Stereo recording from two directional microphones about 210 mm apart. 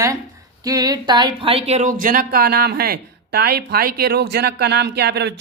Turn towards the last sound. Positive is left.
turn(degrees=-50)  # may be behind; listen again after turning